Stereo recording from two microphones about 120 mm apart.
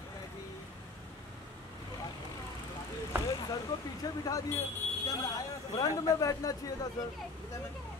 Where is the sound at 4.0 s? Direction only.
30° left (ahead or behind).